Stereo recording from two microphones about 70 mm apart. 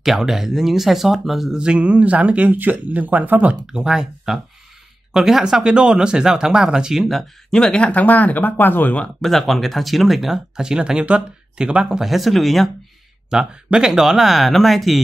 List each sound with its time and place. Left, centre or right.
0.0 s speech: centre
1.6 s speech: centre
3.6 s speech: centre; by 9.1 s left
9.2 s speech: centre
13.3 s speech: centre